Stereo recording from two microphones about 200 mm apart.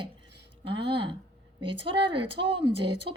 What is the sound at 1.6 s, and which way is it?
A woman's voice, 25° right (ahead or behind).